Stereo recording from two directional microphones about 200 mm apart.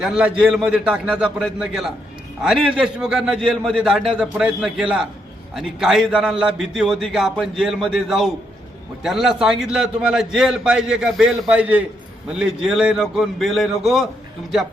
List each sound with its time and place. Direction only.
0.0 s a man's voice: 5° right (ahead or behind)